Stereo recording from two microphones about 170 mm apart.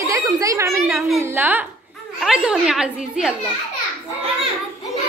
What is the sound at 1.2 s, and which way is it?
A woman's voice, 10° right (ahead or behind).